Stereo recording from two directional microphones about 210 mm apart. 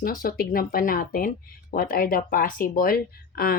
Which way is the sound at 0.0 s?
45° left (ahead or behind).